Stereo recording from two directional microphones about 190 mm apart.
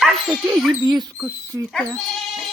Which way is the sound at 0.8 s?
20° right (ahead or behind).